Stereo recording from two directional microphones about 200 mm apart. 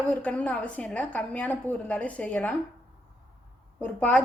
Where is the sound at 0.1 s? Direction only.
5° left (ahead or behind).